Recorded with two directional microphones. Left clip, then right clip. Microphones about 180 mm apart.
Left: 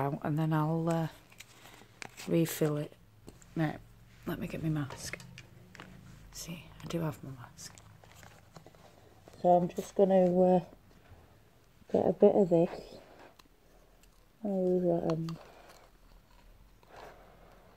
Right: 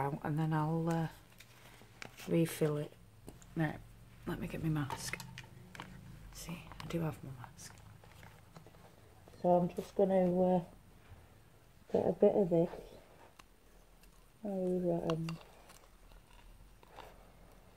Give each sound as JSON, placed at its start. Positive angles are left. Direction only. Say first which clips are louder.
{"t": 0.0, "sound": "speech", "louder": "left 4 dB", "side_deg": 40}
{"t": 2.0, "sound": "a sound", "louder": "left 4 dB", "side_deg": 30}
{"t": 2.3, "sound": "speech", "louder": "left 3 dB", "side_deg": 45}
{"t": 4.9, "sound": "speech", "louder": "right 1 dB", "side_deg": 10}
{"t": 5.8, "sound": "a sound", "louder": "right 1 dB", "side_deg": 5}
{"t": 6.3, "sound": "speech", "louder": "left 3 dB", "side_deg": 40}
{"t": 6.9, "sound": "a sound", "louder": "left 4 dB", "side_deg": 40}
{"t": 9.4, "sound": "speech", "louder": "left 5 dB", "side_deg": 50}
{"t": 11.9, "sound": "speech", "louder": "left 5 dB", "side_deg": 50}
{"t": 14.4, "sound": "speech", "louder": "left 6 dB", "side_deg": 50}